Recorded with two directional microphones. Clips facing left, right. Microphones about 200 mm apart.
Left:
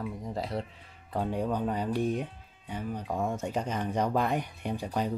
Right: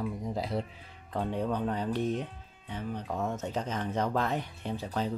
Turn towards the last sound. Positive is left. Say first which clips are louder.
# left 2 dB
turn(degrees=15)  # may be behind; listen again after turning